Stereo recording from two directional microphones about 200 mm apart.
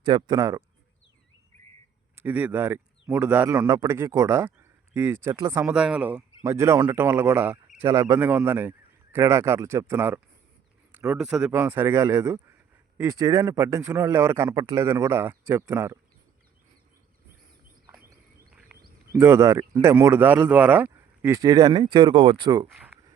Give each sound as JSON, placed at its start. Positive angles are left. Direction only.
{"t": 0.0, "sound": "speech", "side_deg": -20}
{"t": 2.1, "sound": "speech", "side_deg": -10}
{"t": 19.1, "sound": "speech", "side_deg": -10}